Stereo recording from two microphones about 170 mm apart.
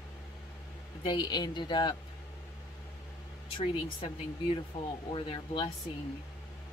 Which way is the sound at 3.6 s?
35° left (ahead or behind).